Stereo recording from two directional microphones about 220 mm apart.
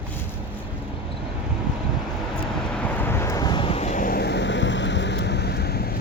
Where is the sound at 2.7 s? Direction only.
5° left (ahead or behind); by 6.0 s 45° left (ahead or behind).